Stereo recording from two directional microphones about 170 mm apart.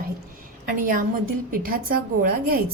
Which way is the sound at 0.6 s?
55° right (ahead or behind).